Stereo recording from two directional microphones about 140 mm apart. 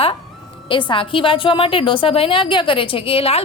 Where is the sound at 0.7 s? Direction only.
35° left (ahead or behind).